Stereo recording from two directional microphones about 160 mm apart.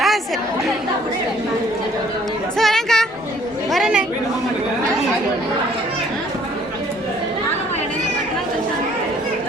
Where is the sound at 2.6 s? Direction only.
Centre (ahead or behind).